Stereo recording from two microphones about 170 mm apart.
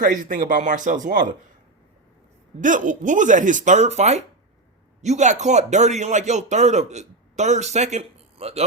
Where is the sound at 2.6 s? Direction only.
50° right (ahead or behind).